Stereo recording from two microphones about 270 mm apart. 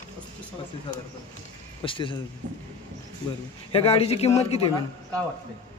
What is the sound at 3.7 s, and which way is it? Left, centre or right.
Speech, left.